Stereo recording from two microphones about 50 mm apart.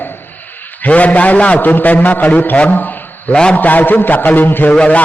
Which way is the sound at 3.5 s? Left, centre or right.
Left.